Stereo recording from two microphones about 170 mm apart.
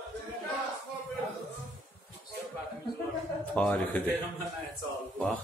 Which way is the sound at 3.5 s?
10° left (ahead or behind).